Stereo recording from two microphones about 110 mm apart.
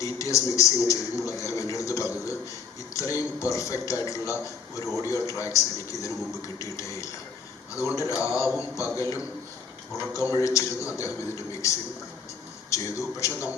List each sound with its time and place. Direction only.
0.0 s a man's voice: 30° left (ahead or behind)
12.7 s a man's voice: 30° left (ahead or behind)